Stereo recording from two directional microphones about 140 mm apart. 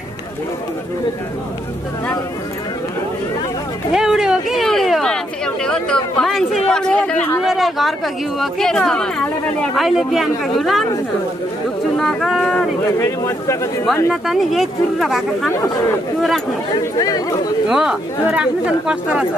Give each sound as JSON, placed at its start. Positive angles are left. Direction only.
{"t": 3.9, "sound": "a sound", "side_deg": -5}
{"t": 6.7, "sound": "chatter", "side_deg": 5}
{"t": 7.4, "sound": "speech", "side_deg": 0}
{"t": 12.0, "sound": "speech", "side_deg": 0}
{"t": 13.0, "sound": "speech", "side_deg": 20}
{"t": 14.2, "sound": "speech", "side_deg": 0}
{"t": 16.7, "sound": "speech", "side_deg": 30}
{"t": 17.6, "sound": "speech", "side_deg": -5}